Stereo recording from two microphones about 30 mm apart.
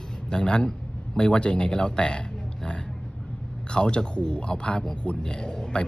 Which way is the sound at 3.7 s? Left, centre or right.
Left.